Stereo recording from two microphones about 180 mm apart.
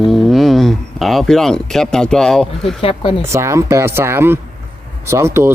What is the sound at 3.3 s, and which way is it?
Speech, 15° right (ahead or behind).